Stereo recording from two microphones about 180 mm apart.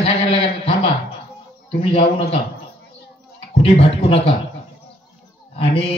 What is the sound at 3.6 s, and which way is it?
Speech, 30° left (ahead or behind).